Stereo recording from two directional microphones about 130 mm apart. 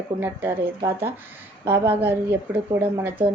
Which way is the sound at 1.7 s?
15° right (ahead or behind).